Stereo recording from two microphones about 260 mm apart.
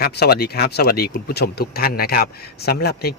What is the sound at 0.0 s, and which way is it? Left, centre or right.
Speech, left.